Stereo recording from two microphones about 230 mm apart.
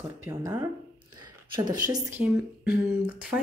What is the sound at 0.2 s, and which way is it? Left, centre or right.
Speech, centre.